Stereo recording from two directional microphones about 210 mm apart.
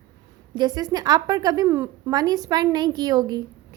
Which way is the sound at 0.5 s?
20° right (ahead or behind).